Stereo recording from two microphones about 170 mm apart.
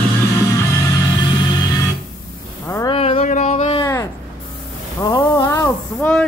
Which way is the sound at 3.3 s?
45° left (ahead or behind).